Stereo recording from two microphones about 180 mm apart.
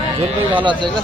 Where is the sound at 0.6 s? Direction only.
25° right (ahead or behind).